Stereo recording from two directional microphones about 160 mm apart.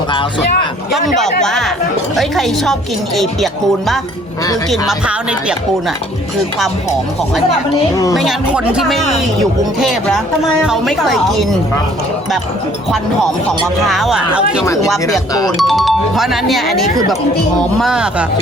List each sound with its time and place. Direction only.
1.0 s speech: centre (ahead or behind)
8.1 s speech: centre (ahead or behind)
13.8 s speech: centre (ahead or behind)
15.3 s speech: 25° left (ahead or behind)
15.5 s speech: centre (ahead or behind)